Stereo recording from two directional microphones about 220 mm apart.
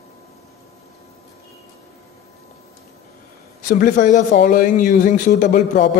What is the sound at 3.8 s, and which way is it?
Speech, 35° left (ahead or behind).